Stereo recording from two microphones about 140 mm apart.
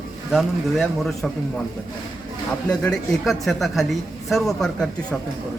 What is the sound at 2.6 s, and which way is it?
Speech, 5° left (ahead or behind).